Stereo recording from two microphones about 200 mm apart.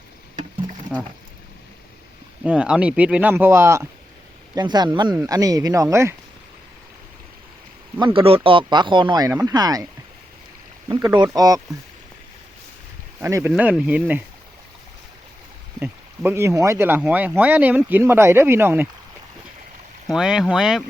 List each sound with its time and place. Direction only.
2.4 s speech: 5° right (ahead or behind)
7.9 s speech: 25° right (ahead or behind)
10.8 s speech: 20° right (ahead or behind)
13.1 s speech: 10° right (ahead or behind)
15.8 s speech: 10° right (ahead or behind)
20.1 s speech: centre (ahead or behind)